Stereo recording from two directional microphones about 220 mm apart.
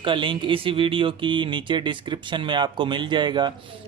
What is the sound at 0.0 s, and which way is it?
Speech, 20° right (ahead or behind).